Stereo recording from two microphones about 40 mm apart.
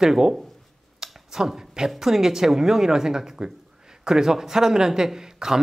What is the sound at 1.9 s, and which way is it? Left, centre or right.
Speech, centre.